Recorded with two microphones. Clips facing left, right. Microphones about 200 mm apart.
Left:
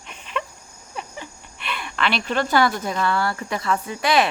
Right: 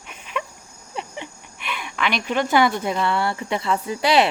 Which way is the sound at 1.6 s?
10° right (ahead or behind).